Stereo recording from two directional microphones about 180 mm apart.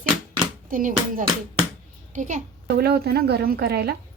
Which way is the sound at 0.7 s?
50° right (ahead or behind).